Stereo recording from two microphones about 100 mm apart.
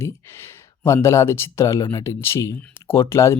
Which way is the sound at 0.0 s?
25° left (ahead or behind).